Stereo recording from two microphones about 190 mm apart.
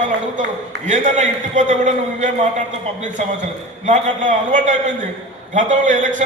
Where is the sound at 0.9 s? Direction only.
40° right (ahead or behind).